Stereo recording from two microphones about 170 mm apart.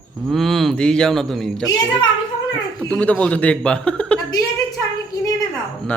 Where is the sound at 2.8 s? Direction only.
5° left (ahead or behind).